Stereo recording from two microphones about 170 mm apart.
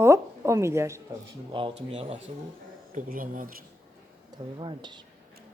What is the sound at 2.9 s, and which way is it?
Speech, 55° right (ahead or behind).